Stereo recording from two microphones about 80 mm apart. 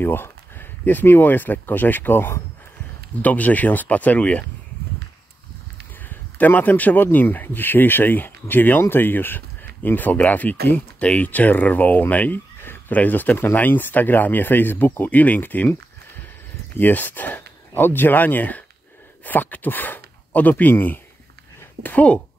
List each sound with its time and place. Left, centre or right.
0.0 s speech: left
6.0 s speech: left